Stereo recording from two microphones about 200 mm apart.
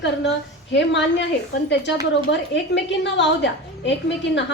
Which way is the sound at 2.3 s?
60° left (ahead or behind).